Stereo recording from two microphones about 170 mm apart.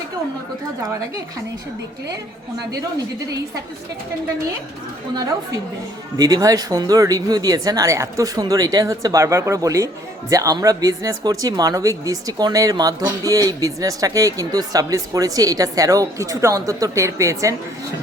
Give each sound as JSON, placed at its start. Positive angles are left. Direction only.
{"t": 5.1, "sound": "speech", "side_deg": -20}